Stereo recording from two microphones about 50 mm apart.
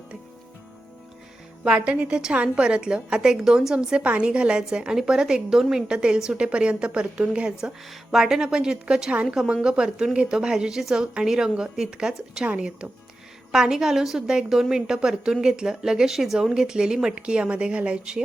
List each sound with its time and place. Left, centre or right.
1.6 s a woman's voice: right
7.9 s a woman's voice: centre
11.0 s a woman's voice: centre